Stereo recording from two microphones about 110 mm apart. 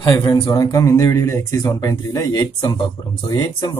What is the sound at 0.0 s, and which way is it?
Speech, 45° left (ahead or behind).